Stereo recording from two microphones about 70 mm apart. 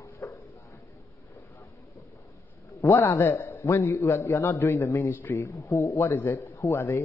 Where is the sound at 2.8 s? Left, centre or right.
Left.